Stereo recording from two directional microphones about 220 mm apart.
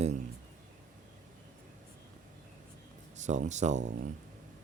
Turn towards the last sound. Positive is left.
turn(degrees=-30)  # may be behind; listen again after turning